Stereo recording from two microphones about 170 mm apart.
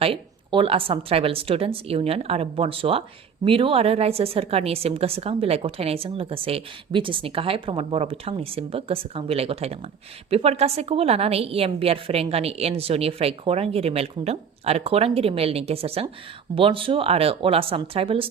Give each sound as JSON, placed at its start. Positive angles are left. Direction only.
{"t": 0.0, "sound": "a woman's voice", "side_deg": -35}